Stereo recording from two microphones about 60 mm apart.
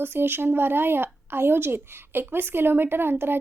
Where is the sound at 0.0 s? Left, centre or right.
Right.